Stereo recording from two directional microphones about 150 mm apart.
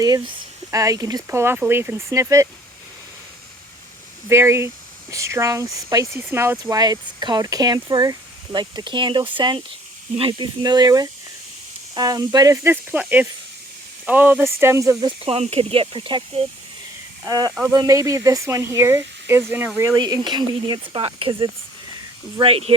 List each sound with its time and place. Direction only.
0.0 s speech: 25° right (ahead or behind)
4.3 s speech: 15° right (ahead or behind)
15.0 s speech: 40° right (ahead or behind)
17.2 s speech: 25° right (ahead or behind)
22.4 s speech: 40° right (ahead or behind)